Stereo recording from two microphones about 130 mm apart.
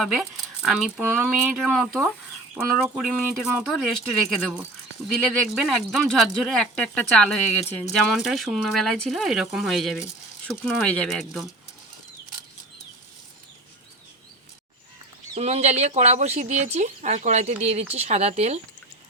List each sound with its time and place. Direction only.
0.0 s speech: 5° right (ahead or behind)
5.1 s speech: centre (ahead or behind)
15.4 s speech: 55° right (ahead or behind)